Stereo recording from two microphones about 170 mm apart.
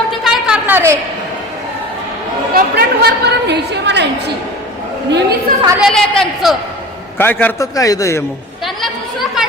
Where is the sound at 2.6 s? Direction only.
70° right (ahead or behind); by 4.3 s 85° right.